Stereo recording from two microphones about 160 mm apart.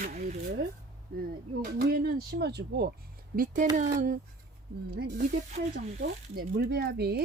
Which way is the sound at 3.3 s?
60° right (ahead or behind).